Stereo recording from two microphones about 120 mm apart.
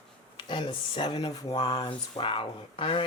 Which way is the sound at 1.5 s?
55° left (ahead or behind).